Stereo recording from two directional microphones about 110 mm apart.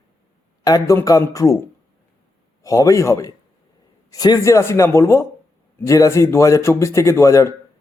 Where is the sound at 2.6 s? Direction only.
30° left (ahead or behind).